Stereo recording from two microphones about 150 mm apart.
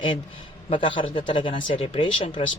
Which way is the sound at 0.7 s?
35° left (ahead or behind).